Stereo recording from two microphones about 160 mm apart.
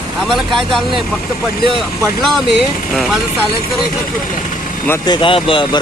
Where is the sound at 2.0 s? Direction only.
Centre (ahead or behind).